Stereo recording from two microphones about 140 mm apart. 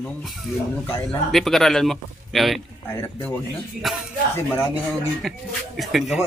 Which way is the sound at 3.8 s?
Centre (ahead or behind).